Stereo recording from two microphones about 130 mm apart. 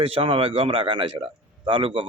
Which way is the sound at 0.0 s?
45° right (ahead or behind).